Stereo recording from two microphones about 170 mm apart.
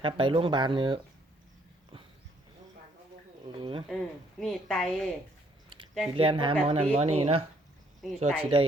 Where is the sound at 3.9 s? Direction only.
Centre (ahead or behind).